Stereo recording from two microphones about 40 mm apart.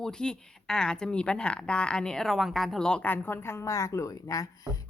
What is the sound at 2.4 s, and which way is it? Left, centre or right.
Speech, centre.